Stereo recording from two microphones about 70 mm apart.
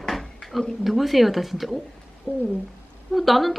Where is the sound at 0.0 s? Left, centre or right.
Centre.